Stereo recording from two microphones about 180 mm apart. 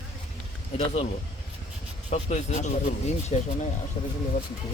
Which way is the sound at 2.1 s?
40° left (ahead or behind).